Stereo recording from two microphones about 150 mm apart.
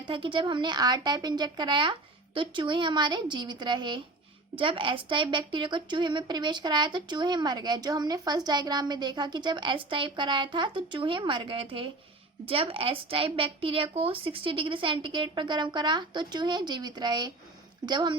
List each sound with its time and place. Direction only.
0.0 s a woman's voice: 35° right (ahead or behind)